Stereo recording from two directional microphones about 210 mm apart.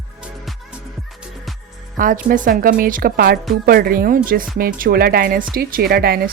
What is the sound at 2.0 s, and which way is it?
A woman's voice, 40° right (ahead or behind).